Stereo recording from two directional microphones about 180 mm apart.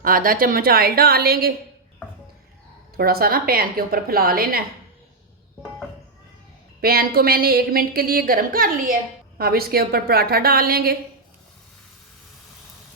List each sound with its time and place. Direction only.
0.0 s a woman's voice: 50° right (ahead or behind)
3.0 s a woman's voice: 55° right (ahead or behind)
6.8 s a woman's voice: 55° right (ahead or behind)